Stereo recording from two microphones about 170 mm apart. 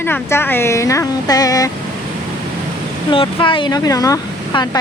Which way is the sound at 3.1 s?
30° left (ahead or behind).